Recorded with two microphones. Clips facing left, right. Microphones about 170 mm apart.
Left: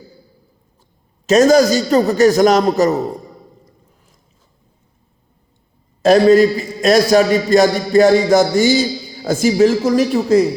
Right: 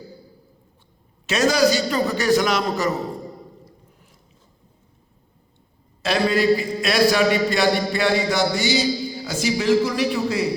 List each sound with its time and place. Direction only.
1.3 s a man's voice: 45° left (ahead or behind)
6.0 s a man's voice: 45° left (ahead or behind)